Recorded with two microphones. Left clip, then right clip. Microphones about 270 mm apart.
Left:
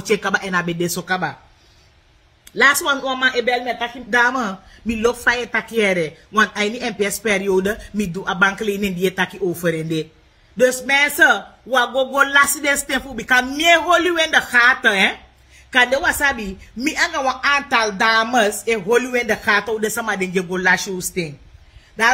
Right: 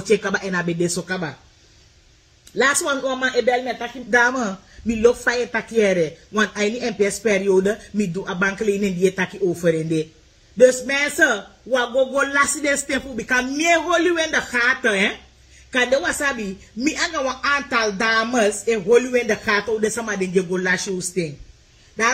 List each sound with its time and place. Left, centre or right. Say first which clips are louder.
0.1 s speech: left 1 dB; left
2.7 s a woman's voice: left 3 dB; centre
11.1 s a woman's voice: left 4 dB; centre